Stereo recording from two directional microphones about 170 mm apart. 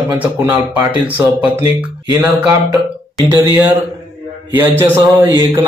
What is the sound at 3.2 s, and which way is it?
Speech, 10° right (ahead or behind).